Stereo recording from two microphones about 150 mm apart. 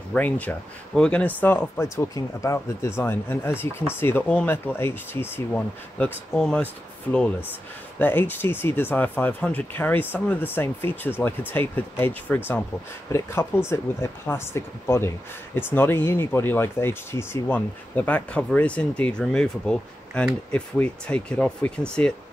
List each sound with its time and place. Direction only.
0.1 s speech: 10° left (ahead or behind)